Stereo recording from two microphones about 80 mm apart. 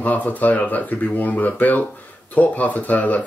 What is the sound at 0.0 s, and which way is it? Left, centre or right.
Speech, left.